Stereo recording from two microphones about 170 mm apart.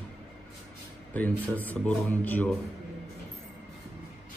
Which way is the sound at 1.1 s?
10° left (ahead or behind).